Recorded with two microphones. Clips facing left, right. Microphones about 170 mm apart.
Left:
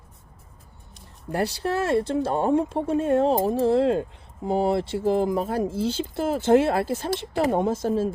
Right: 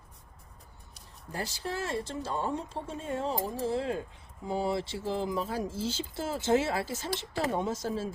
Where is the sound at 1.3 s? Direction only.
65° left (ahead or behind).